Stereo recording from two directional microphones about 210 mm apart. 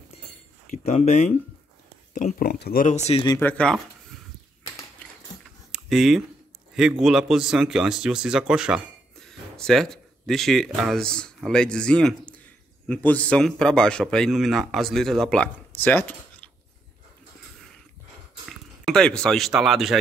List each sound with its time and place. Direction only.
0.7 s speech: 30° left (ahead or behind)
3.3 s speech: 10° left (ahead or behind)
5.7 s a sound: centre (ahead or behind)
6.7 s a man's voice: 5° right (ahead or behind)
18.9 s a man's voice: 5° left (ahead or behind)